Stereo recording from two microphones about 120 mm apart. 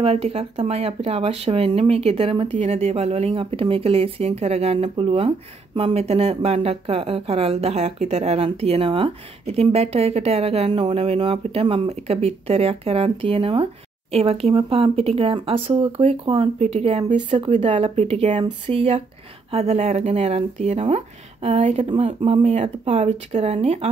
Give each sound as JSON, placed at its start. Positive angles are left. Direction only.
{"t": 0.0, "sound": "speech", "side_deg": -55}
{"t": 4.9, "sound": "speech", "side_deg": -50}
{"t": 17.1, "sound": "speech", "side_deg": -45}
{"t": 21.8, "sound": "speech", "side_deg": -55}